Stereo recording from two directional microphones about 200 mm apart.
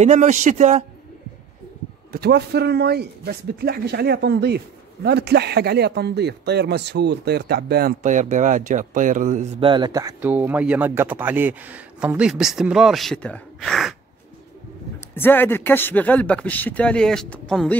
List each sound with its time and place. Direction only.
0.0 s speech: 35° right (ahead or behind)
2.1 s speech: 55° right (ahead or behind)
8.0 s speech: 40° right (ahead or behind)
9.6 s speech: 25° right (ahead or behind); by 13.9 s centre (ahead or behind)
15.1 s speech: 10° left (ahead or behind)